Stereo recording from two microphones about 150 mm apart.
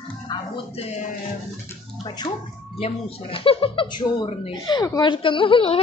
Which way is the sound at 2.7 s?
40° left (ahead or behind).